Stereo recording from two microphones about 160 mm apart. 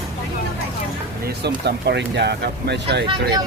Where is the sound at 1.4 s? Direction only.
90° right.